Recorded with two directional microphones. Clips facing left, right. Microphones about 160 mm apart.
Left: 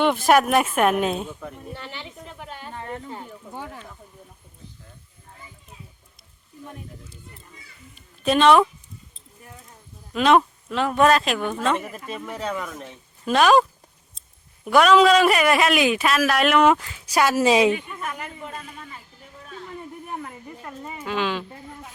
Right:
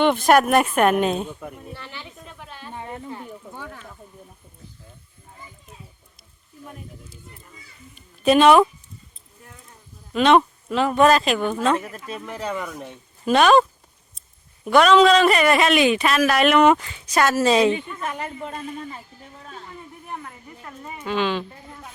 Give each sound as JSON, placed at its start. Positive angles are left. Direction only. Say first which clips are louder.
{"t": 0.0, "sound": "a man's voice", "louder": "right 1 dB", "side_deg": 0}
{"t": 1.4, "sound": "speech", "louder": "even", "side_deg": -10}
{"t": 1.7, "sound": "a woman's voice", "louder": "left 2 dB", "side_deg": 20}
{"t": 2.7, "sound": "a sound", "louder": "right 1 dB", "side_deg": -15}
{"t": 3.1, "sound": "speech", "louder": "right 1 dB", "side_deg": 15}
{"t": 6.7, "sound": "a man's voice", "louder": "even", "side_deg": -5}
{"t": 7.9, "sound": "a sound", "louder": "right 4 dB", "side_deg": -5}
{"t": 10.1, "sound": "a man's voice", "louder": "right 1 dB", "side_deg": 0}
{"t": 17.7, "sound": "a woman's voice", "louder": "right 1 dB", "side_deg": -25}
{"t": 21.0, "sound": "a man's voice", "louder": "right 2 dB", "side_deg": 5}